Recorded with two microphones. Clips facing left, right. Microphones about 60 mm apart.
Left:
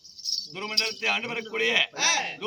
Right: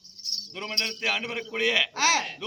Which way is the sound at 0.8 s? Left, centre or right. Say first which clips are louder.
Left 1 dB; right.